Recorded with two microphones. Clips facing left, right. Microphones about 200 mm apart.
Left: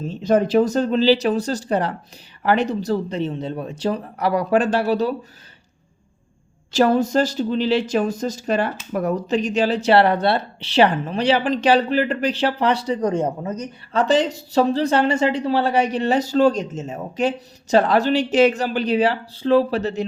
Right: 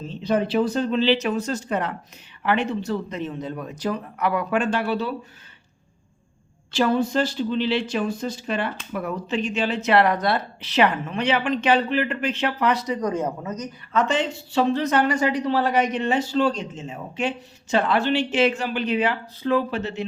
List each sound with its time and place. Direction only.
0.1 s speech: 45° left (ahead or behind)
6.7 s speech: 45° left (ahead or behind)